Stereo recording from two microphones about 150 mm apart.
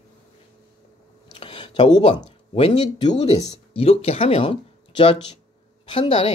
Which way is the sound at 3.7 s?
45° left (ahead or behind).